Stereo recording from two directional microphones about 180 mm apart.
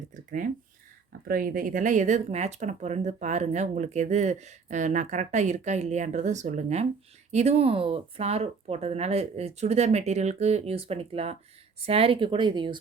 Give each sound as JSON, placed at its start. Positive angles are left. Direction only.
{"t": 0.3, "sound": "speech", "side_deg": -45}